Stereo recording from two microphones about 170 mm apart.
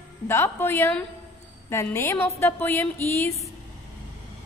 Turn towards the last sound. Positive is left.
turn(degrees=15)  # may be behind; listen again after turning